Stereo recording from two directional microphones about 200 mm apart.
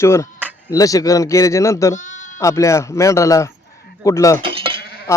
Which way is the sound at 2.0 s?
35° left (ahead or behind).